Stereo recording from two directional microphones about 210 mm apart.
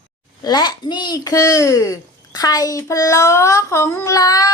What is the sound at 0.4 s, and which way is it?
A child's voice, 20° left (ahead or behind).